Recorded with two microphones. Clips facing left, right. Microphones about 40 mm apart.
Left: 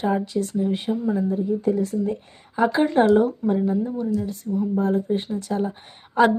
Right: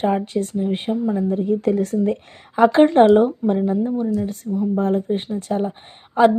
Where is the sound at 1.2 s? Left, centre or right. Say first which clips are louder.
Right 3 dB; right.